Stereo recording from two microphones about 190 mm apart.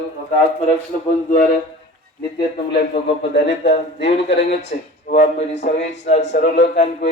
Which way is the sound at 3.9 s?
65° left (ahead or behind).